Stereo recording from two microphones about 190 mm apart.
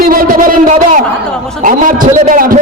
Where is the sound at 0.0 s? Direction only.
50° right (ahead or behind).